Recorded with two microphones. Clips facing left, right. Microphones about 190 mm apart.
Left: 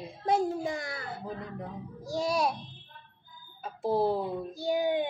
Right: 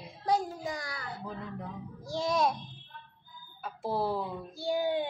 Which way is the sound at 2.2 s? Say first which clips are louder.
Even; 10° left (ahead or behind).